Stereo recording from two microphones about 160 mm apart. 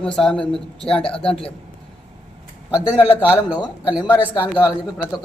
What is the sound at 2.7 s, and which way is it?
A man's voice, 10° right (ahead or behind).